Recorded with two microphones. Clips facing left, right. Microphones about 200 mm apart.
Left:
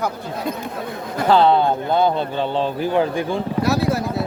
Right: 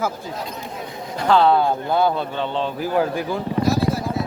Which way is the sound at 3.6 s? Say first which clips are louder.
Left 1 dB; 70° left (ahead or behind).